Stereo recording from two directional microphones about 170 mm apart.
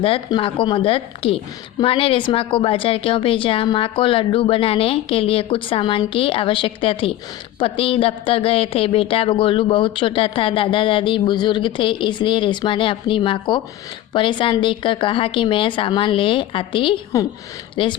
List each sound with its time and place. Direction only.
0.0 s a woman's voice: 30° left (ahead or behind)